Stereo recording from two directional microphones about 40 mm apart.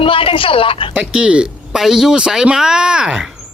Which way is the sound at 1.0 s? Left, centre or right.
Right.